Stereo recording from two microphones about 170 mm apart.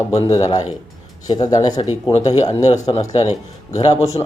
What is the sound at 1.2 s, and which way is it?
Speech, 25° left (ahead or behind).